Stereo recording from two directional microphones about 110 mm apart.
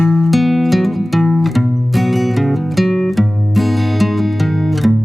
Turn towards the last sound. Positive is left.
turn(degrees=0)  # may be behind; listen again after turning